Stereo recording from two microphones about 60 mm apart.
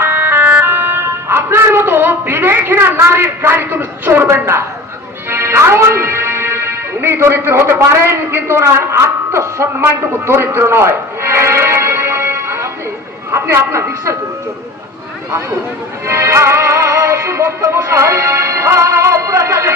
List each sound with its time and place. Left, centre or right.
0.0 s vehicle: right
0.6 s speech: right
5.3 s music: right
7.9 s a woman's voice: right
9.8 s music: right
13.3 s a woman's voice: right
16.0 s music: right